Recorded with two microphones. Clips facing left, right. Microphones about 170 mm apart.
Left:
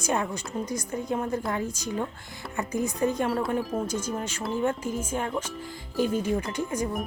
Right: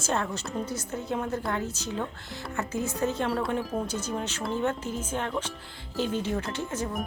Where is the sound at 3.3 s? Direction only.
Centre (ahead or behind).